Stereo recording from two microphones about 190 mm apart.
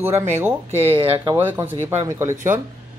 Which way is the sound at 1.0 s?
30° right (ahead or behind).